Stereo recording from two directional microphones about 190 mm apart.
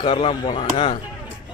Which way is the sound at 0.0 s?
25° left (ahead or behind).